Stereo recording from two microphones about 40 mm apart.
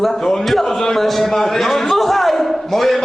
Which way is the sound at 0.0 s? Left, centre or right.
Centre.